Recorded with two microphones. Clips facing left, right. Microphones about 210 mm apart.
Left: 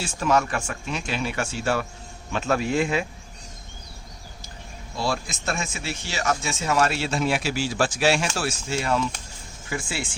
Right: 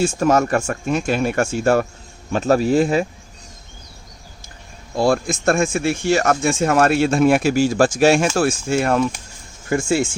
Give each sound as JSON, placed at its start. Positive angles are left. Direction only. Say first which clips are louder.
{"t": 0.0, "sound": "speech", "louder": "right 7 dB", "side_deg": -45}
{"t": 4.9, "sound": "speech", "louder": "right 10 dB", "side_deg": -50}